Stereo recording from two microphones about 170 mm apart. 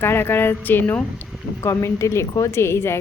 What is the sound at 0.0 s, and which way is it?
Speech, 15° left (ahead or behind).